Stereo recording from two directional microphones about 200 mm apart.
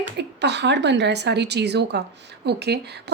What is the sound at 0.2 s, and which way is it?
A woman's voice, 60° right (ahead or behind).